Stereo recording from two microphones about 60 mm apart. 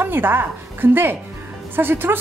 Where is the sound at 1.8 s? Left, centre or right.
Right.